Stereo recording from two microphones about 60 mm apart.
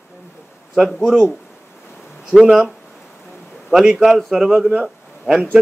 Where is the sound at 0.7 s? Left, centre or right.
Centre.